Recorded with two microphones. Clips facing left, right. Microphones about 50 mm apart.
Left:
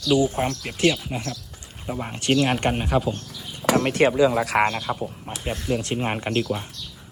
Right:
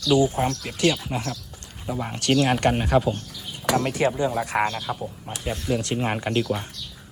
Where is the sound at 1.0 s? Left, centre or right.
Centre.